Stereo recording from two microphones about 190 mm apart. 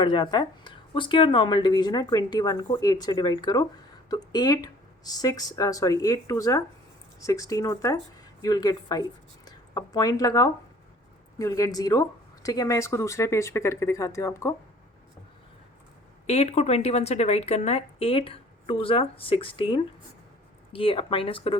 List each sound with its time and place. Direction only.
0.0 s speech: 25° left (ahead or behind)
16.2 s a woman's voice: 35° left (ahead or behind)